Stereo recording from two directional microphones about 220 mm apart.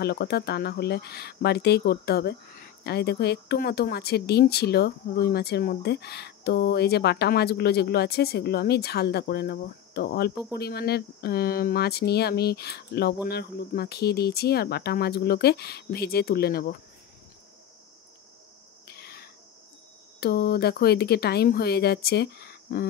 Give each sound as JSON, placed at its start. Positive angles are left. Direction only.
{"t": 0.0, "sound": "speech", "side_deg": 45}
{"t": 18.9, "sound": "a sound", "side_deg": 45}
{"t": 20.2, "sound": "speech", "side_deg": 45}